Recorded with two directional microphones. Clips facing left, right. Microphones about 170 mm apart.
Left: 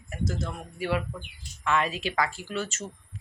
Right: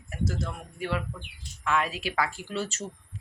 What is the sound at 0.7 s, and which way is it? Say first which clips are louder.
Speech: left 3 dB; 5° left (ahead or behind).